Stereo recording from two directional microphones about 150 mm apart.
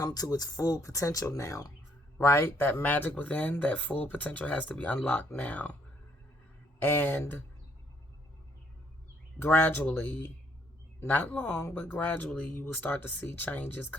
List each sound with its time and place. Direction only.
0.0 s speech: 25° left (ahead or behind)
6.8 s speech: 15° left (ahead or behind)
9.4 s speech: 15° left (ahead or behind)